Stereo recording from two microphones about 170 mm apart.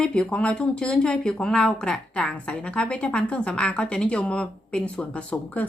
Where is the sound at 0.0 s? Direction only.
5° left (ahead or behind).